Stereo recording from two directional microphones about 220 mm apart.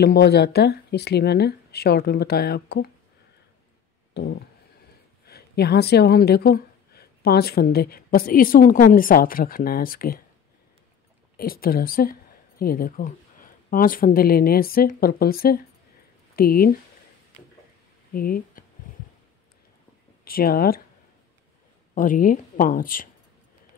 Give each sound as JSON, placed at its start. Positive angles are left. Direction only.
{"t": 0.0, "sound": "speech", "side_deg": 50}
{"t": 4.1, "sound": "a sound", "side_deg": 50}
{"t": 5.2, "sound": "speech", "side_deg": 45}
{"t": 11.3, "sound": "speech", "side_deg": 40}
{"t": 18.1, "sound": "speech", "side_deg": 40}
{"t": 20.2, "sound": "speech", "side_deg": 40}
{"t": 21.9, "sound": "speech", "side_deg": 40}